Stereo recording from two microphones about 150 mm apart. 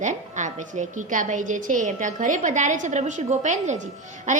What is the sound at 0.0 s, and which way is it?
A woman's voice, 55° right (ahead or behind).